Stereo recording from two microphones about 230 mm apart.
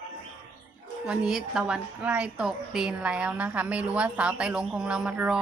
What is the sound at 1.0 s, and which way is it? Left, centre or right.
A woman's voice, centre.